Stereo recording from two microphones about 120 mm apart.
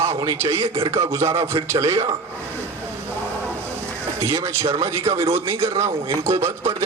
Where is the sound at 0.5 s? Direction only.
25° right (ahead or behind).